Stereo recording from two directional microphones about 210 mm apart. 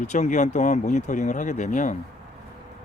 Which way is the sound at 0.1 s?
35° left (ahead or behind).